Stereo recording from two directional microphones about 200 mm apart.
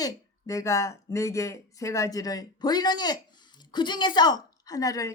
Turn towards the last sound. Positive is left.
turn(degrees=15)  # may be behind; listen again after turning